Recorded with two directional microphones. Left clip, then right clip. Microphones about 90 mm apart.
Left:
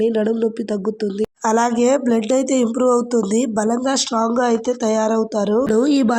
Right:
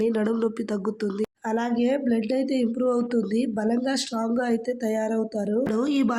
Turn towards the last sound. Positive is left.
turn(degrees=70)  # may be behind; listen again after turning